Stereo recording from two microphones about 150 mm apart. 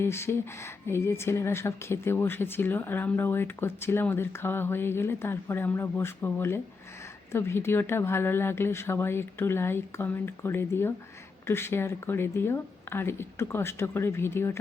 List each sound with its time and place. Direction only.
0.0 s speech: 15° left (ahead or behind)